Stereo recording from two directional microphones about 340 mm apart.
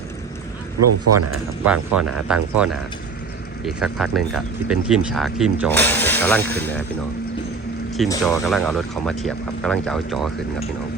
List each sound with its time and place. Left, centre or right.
0.8 s speech: right
1.6 s speech: centre
8.1 s speech: centre